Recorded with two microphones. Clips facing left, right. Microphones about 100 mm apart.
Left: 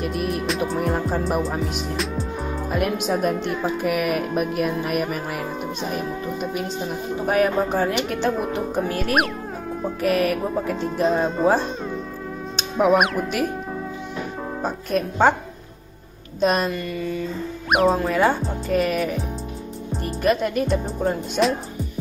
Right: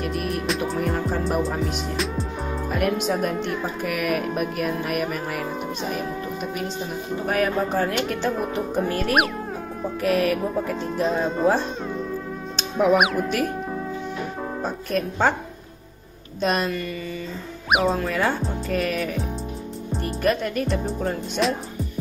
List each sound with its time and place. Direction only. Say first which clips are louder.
0.0 s music: left 2 dB; centre (ahead or behind)
2.7 s speech: even; 10° left (ahead or behind)
7.2 s speech: left 3 dB; 10° left (ahead or behind)
14.6 s speech: left 2 dB; 5° left (ahead or behind)
16.3 s speech: left 3 dB; 10° left (ahead or behind)
17.6 s speech: left 3 dB; 5° right (ahead or behind)
20.2 s speech: left 3 dB; 10° left (ahead or behind)
21.4 s speech: left 3 dB; 15° left (ahead or behind)